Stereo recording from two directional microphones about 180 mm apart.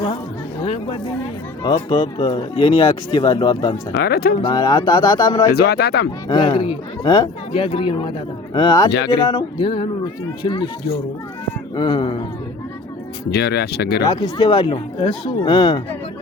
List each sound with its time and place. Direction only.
0.6 s a sound: 30° left (ahead or behind)
1.6 s speech: 25° left (ahead or behind)
3.9 s speech: 60° left (ahead or behind)
4.4 s speech: 25° left (ahead or behind)
5.5 s speech: 60° left (ahead or behind)
6.2 s speech: 25° left (ahead or behind)
13.3 s speech: 65° left (ahead or behind)
14.0 s speech: 25° left (ahead or behind)